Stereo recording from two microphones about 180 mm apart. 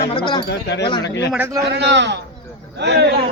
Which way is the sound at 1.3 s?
10° right (ahead or behind).